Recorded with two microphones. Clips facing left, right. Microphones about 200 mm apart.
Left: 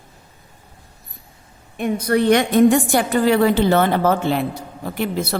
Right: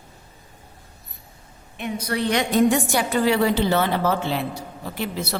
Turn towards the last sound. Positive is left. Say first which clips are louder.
# left 5 dB
turn(degrees=50)  # may be behind; listen again after turning